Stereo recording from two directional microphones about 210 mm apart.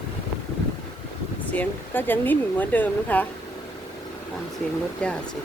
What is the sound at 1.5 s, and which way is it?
Speech, 10° left (ahead or behind).